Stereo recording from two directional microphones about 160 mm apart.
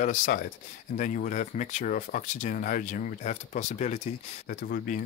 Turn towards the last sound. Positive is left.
turn(degrees=55)  # may be behind; listen again after turning